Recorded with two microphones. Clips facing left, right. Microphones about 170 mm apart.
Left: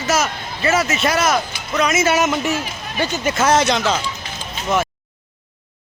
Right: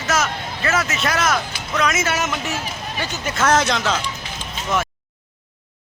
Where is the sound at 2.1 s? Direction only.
15° left (ahead or behind).